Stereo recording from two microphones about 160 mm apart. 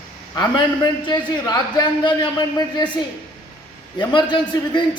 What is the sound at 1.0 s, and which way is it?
A woman's voice, 25° left (ahead or behind).